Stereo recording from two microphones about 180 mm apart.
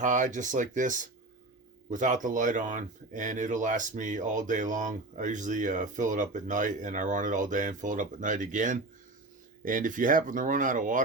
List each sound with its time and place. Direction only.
0.0 s speech: 45° right (ahead or behind)